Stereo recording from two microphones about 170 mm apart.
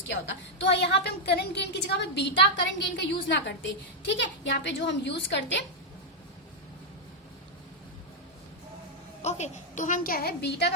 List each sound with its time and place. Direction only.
0.1 s a woman's voice: 90° left
9.2 s a woman's voice: 45° left (ahead or behind); by 10.7 s 75° left (ahead or behind)